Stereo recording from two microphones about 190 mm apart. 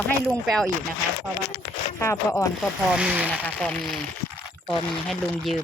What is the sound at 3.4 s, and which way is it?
Speech, 5° left (ahead or behind).